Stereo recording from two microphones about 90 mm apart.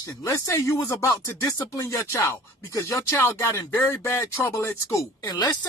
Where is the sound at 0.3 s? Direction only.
35° left (ahead or behind).